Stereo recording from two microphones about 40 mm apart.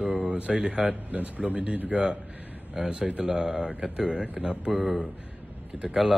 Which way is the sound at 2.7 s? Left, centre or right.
Centre.